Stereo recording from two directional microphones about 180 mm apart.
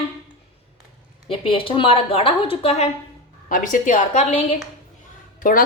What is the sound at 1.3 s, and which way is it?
A woman's voice, 30° left (ahead or behind).